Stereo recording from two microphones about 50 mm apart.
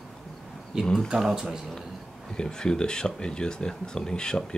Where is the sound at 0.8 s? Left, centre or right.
Centre.